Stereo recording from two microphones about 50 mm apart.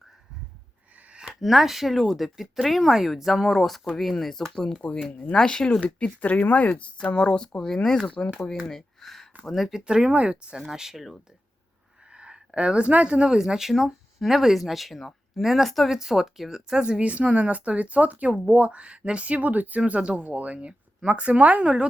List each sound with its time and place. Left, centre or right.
1.3 s a woman's voice: centre
5.8 s speech: left; by 8.0 s centre
8.0 s speech: left
8.4 s a woman's voice: centre
9.7 s speech: centre
10.6 s a woman's voice: centre
12.1 s a sound: centre
12.5 s a woman's voice: right